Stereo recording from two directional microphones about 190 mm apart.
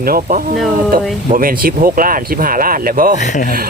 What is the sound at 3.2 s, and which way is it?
Speech, 40° left (ahead or behind).